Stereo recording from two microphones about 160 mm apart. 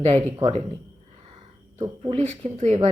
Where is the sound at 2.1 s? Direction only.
45° right (ahead or behind).